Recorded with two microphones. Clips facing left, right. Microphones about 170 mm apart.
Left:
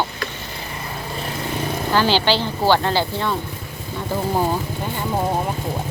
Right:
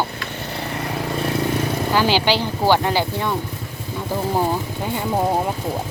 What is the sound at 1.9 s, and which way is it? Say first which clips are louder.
Speech: left 1 dB; 10° right (ahead or behind).